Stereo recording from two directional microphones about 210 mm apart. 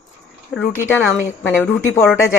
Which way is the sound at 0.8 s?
10° left (ahead or behind).